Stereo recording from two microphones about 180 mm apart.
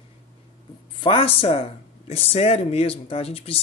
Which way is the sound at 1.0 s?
30° left (ahead or behind).